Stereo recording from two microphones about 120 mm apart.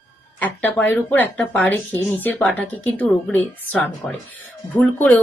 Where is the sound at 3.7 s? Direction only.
5° left (ahead or behind).